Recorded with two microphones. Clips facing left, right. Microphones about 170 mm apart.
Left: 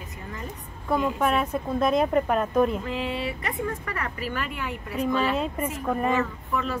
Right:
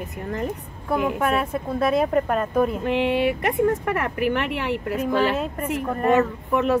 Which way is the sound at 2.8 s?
70° right (ahead or behind).